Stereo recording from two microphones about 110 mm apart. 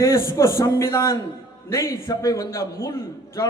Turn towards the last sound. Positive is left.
turn(degrees=30)  # may be behind; listen again after turning